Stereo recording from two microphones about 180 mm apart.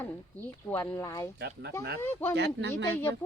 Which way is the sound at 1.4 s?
65° right (ahead or behind).